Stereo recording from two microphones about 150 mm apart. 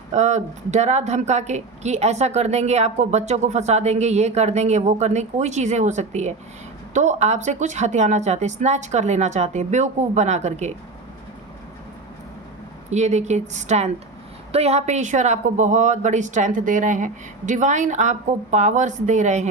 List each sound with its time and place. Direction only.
0.1 s a woman's voice: 50° right (ahead or behind)
12.9 s a woman's voice: 50° right (ahead or behind)